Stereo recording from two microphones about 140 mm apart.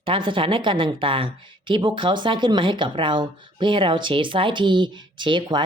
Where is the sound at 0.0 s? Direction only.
40° right (ahead or behind).